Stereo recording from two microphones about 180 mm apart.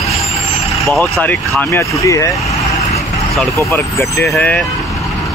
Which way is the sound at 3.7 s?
15° left (ahead or behind).